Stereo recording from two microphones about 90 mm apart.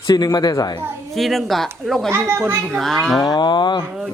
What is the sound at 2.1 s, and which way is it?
Speech, 30° right (ahead or behind).